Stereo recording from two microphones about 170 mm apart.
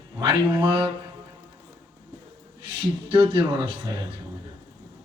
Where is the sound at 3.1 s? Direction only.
30° right (ahead or behind).